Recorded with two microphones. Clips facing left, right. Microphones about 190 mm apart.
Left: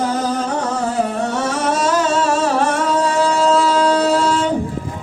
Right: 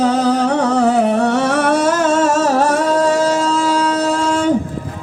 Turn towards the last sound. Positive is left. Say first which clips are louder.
# left 1 dB
turn(degrees=-45)  # may be behind; listen again after turning